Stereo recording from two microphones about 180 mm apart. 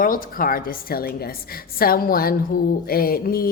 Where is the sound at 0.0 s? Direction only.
50° left (ahead or behind).